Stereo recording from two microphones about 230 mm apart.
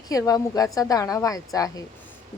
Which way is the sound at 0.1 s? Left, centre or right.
Centre.